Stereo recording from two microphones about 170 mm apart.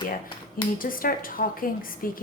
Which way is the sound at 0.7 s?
55° left (ahead or behind).